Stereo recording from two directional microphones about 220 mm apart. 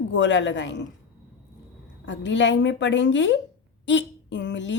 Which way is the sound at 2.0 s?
55° left (ahead or behind).